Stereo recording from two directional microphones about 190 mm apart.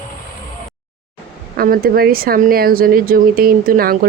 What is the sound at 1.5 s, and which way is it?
Speech, 50° right (ahead or behind).